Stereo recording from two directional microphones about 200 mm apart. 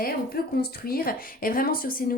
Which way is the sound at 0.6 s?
50° left (ahead or behind).